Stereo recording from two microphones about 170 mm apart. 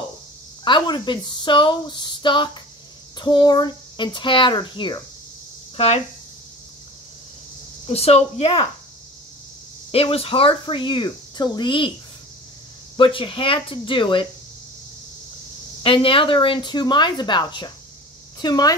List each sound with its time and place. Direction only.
0.7 s speech: 25° left (ahead or behind)
5.8 s speech: 40° left (ahead or behind)
7.8 s speech: 35° left (ahead or behind)
9.8 s speech: 35° left (ahead or behind)
12.9 s speech: 30° left (ahead or behind)
15.8 s speech: 30° left (ahead or behind)